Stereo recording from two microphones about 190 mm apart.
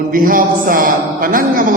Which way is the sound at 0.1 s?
50° right (ahead or behind).